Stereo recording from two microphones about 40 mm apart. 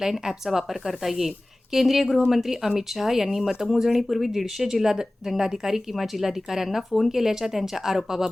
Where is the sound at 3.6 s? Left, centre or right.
Centre.